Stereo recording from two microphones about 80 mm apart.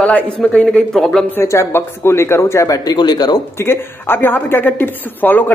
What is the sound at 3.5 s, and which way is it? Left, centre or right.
Speech, left.